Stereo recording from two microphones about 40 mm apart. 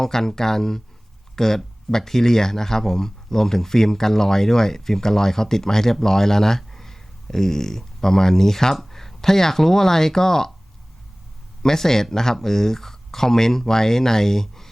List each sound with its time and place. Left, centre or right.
0.0 s speech: centre
11.6 s speech: centre